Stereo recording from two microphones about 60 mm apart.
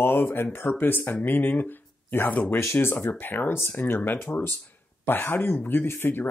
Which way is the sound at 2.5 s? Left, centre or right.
Left.